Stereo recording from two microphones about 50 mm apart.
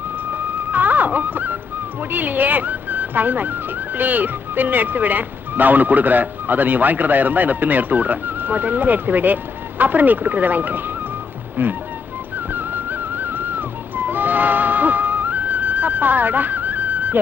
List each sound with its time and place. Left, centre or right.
0.7 s music: right
2.0 s speech: right
11.6 s music: right